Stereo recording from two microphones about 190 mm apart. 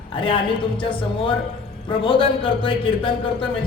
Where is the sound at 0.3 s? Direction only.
25° left (ahead or behind).